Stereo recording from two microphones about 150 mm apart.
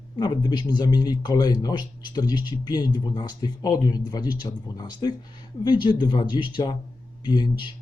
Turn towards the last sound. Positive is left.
turn(degrees=30)  # may be behind; listen again after turning